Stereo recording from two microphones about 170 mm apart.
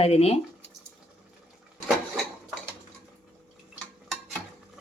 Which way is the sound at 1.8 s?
Centre (ahead or behind).